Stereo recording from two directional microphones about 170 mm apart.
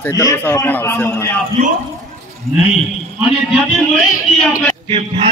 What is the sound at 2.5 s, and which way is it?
Speech, 40° right (ahead or behind).